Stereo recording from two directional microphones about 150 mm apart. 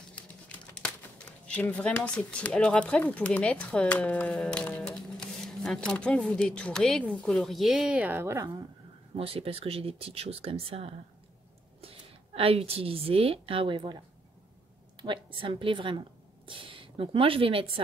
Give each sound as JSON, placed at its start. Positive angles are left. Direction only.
{"t": 0.1, "sound": "speech", "side_deg": 5}
{"t": 9.1, "sound": "speech", "side_deg": -40}
{"t": 12.4, "sound": "speech", "side_deg": -40}